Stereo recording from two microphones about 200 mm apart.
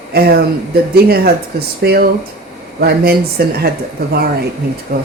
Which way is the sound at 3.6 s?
50° right (ahead or behind).